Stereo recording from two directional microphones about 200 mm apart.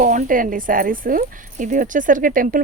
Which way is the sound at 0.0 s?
40° right (ahead or behind).